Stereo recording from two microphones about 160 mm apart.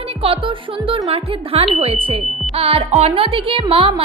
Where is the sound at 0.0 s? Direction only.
35° right (ahead or behind).